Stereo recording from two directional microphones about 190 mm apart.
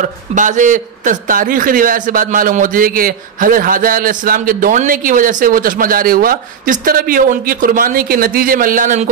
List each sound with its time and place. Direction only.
0.4 s a man's voice: 40° right (ahead or behind)